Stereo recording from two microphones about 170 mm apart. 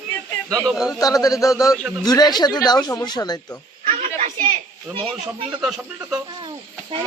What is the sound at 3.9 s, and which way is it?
Children playing, 50° right (ahead or behind).